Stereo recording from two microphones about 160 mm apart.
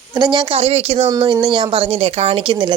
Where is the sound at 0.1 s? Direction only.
30° right (ahead or behind).